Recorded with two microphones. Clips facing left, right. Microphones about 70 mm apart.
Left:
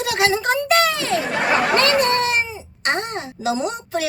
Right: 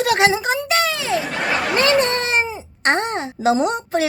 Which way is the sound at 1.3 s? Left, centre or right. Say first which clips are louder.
Left 2 dB; centre.